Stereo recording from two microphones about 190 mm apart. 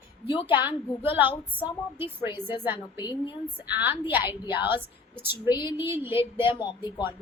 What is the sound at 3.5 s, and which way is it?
A woman's voice, 10° right (ahead or behind).